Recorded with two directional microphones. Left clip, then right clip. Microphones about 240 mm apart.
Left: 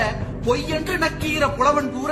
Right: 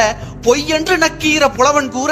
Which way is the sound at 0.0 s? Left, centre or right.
Right.